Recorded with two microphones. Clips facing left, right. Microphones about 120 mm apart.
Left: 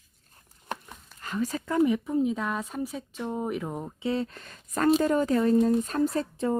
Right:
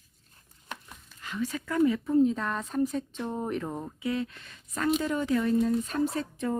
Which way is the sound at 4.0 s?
30° left (ahead or behind).